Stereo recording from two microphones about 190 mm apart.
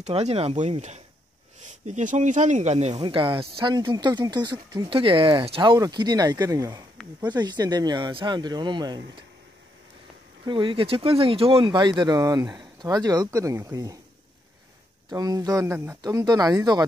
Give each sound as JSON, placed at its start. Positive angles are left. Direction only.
{"t": 0.0, "sound": "speech", "side_deg": -35}
{"t": 10.4, "sound": "speech", "side_deg": -25}
{"t": 15.0, "sound": "speech", "side_deg": -20}